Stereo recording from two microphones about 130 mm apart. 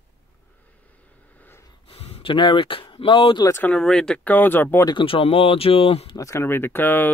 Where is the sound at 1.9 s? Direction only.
50° left (ahead or behind).